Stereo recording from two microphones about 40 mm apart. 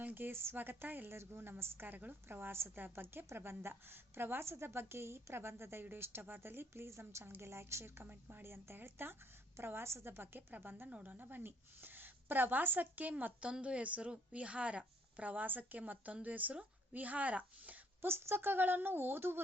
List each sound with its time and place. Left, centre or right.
0.0 s a sound: right
0.3 s a woman's voice: right
0.5 s a woman's voice: right
1.9 s a woman's voice: right
2.2 s a woman's voice: right
2.9 s a woman's voice: right
5.8 s a woman's voice: right
8.0 s a woman's voice: right
9.6 s a woman's voice: right
10.5 s a woman's voice: right
13.4 s a woman's voice: right
18.0 s a woman's voice: right